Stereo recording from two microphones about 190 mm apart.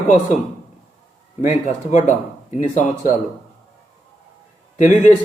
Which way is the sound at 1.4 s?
40° left (ahead or behind).